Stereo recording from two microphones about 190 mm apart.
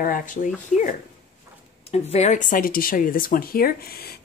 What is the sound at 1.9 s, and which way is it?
Speech, 35° left (ahead or behind).